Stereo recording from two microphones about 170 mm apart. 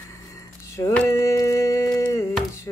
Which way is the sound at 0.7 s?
15° left (ahead or behind).